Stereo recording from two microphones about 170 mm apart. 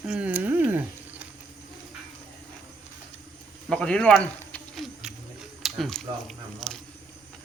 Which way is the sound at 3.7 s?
5° left (ahead or behind).